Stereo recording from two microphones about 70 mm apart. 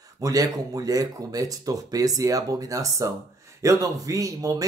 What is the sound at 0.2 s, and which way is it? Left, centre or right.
Speech, right.